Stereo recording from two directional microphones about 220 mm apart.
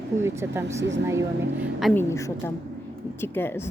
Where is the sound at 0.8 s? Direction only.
55° right (ahead or behind).